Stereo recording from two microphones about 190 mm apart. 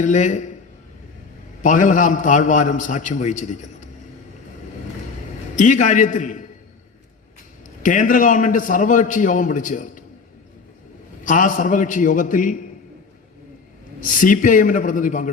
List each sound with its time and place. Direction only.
0.0 s a man's voice: 40° left (ahead or behind)
1.6 s a man's voice: 40° left (ahead or behind)
5.5 s a man's voice: 40° left (ahead or behind)
7.8 s a man's voice: 45° left (ahead or behind)
11.2 s a man's voice: 40° left (ahead or behind)
14.2 s a man's voice: 45° left (ahead or behind)